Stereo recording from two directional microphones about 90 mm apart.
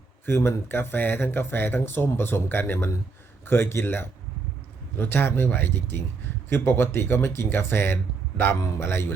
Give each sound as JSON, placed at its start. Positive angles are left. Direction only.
{"t": 0.3, "sound": "speech", "side_deg": 30}